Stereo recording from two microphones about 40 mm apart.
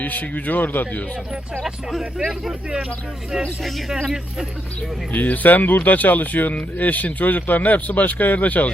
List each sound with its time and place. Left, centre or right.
0.0 s speech: left
1.6 s speech: centre
5.1 s speech: left